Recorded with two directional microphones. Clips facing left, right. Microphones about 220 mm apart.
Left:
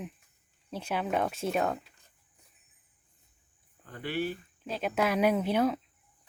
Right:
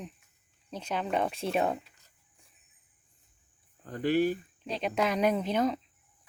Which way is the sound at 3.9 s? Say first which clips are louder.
Right 7 dB; 40° right (ahead or behind).